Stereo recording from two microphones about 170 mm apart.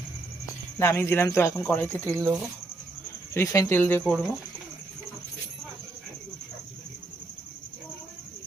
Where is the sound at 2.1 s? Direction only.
10° right (ahead or behind).